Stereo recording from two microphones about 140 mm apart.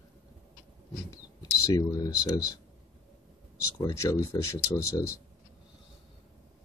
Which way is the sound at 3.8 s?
25° left (ahead or behind).